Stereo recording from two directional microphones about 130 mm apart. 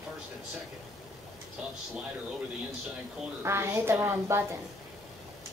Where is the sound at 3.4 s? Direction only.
20° right (ahead or behind).